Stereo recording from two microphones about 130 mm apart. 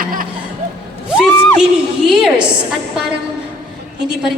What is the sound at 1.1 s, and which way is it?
Crowd, 5° right (ahead or behind).